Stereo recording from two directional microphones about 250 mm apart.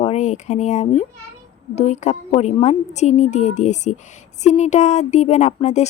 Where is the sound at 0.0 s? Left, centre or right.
Left.